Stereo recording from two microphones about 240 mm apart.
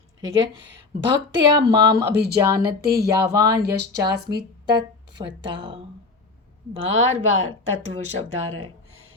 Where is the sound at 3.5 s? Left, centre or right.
Right.